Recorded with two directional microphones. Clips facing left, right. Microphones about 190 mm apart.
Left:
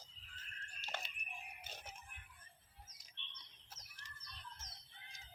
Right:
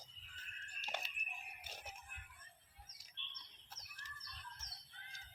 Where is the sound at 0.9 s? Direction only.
15° right (ahead or behind).